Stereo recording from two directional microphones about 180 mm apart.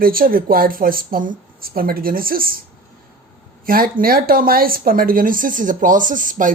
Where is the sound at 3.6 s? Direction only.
55° right (ahead or behind).